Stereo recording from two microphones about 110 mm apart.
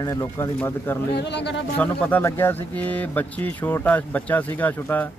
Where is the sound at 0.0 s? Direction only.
30° left (ahead or behind).